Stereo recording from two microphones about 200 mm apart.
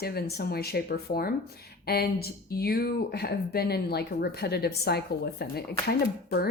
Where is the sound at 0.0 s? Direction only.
50° left (ahead or behind).